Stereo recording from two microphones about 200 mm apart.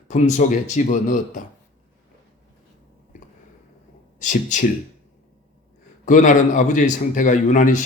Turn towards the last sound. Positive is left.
turn(degrees=40)  # may be behind; listen again after turning